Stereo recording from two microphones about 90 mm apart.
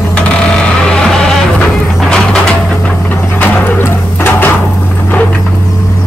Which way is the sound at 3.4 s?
20° left (ahead or behind).